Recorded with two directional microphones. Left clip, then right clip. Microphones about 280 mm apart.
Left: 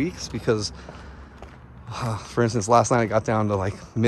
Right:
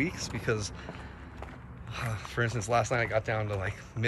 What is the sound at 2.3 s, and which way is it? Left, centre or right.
Speech, centre.